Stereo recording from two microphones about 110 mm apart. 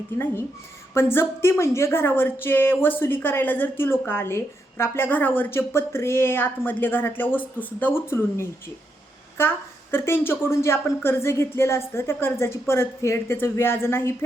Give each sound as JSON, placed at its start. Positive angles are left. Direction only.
{"t": 0.9, "sound": "a woman's voice", "side_deg": 20}